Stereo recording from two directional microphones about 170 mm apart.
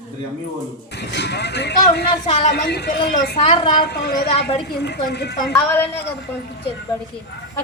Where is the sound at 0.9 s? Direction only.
90° left.